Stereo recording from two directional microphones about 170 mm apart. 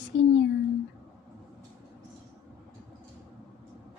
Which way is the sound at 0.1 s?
90° left.